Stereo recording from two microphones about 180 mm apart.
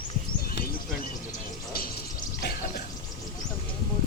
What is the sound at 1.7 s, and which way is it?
Music, 55° left (ahead or behind).